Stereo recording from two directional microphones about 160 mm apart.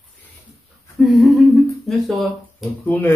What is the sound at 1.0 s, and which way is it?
Speech, centre (ahead or behind).